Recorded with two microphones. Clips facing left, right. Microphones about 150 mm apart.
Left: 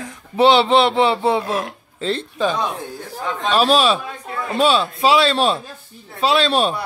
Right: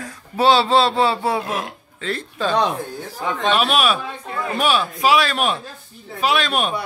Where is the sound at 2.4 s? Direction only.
15° left (ahead or behind).